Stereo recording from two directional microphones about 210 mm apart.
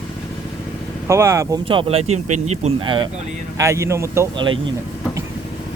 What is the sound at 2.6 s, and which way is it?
Speech, 25° right (ahead or behind).